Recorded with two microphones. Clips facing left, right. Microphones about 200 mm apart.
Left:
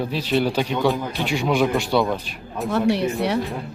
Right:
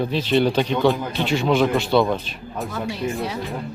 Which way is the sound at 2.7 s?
70° left (ahead or behind).